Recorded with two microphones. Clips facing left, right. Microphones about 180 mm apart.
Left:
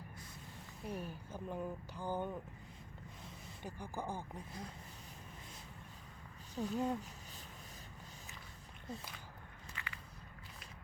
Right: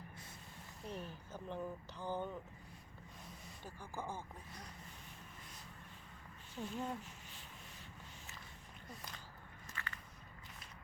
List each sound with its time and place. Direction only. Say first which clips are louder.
0.9 s speech: left 3 dB; 10° left (ahead or behind)
3.6 s speech: left 3 dB; 15° left (ahead or behind)
6.6 s speech: left 5 dB; 40° left (ahead or behind)
9.8 s biting: right 1 dB; 15° left (ahead or behind)